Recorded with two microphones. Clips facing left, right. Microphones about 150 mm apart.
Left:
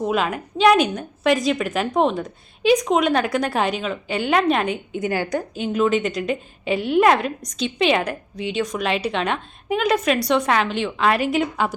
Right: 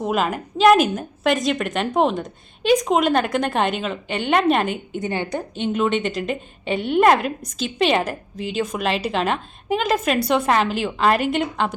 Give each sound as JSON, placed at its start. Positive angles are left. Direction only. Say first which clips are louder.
{"t": 0.0, "sound": "a woman's voice", "louder": "even", "side_deg": 0}
{"t": 5.1, "sound": "a woman's voice", "louder": "left 2 dB", "side_deg": -25}
{"t": 5.5, "sound": "a woman's voice", "louder": "left 1 dB", "side_deg": 0}